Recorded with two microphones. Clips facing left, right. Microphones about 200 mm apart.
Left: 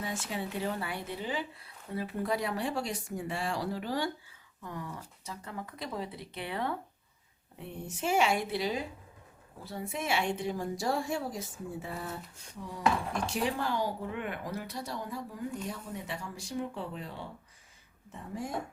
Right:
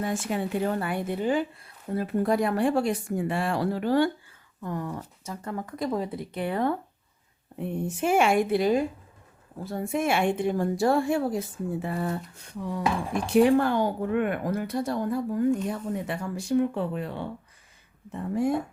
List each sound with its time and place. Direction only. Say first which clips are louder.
0.0 s speech: right 8 dB; 55° right (ahead or behind)